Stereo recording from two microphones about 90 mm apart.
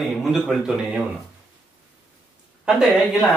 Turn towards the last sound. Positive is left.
turn(degrees=0)  # may be behind; listen again after turning